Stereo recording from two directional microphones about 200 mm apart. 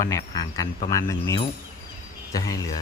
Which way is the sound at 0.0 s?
15° left (ahead or behind).